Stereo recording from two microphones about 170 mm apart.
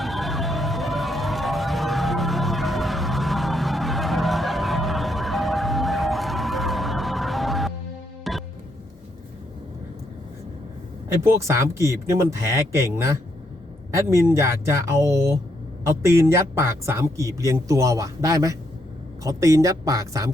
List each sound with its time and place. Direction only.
0.0 s a sound: centre (ahead or behind)
8.2 s music: centre (ahead or behind)
11.1 s a man's voice: 15° right (ahead or behind)